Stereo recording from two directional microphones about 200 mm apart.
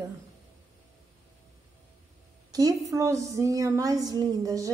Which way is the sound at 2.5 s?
20° right (ahead or behind).